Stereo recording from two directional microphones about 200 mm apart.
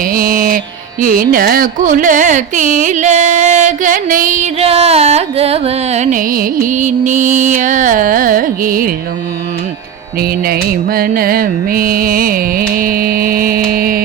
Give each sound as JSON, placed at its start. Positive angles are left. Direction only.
{"t": 0.0, "sound": "music", "side_deg": -45}
{"t": 1.0, "sound": "speech", "side_deg": -45}
{"t": 10.2, "sound": "music", "side_deg": -50}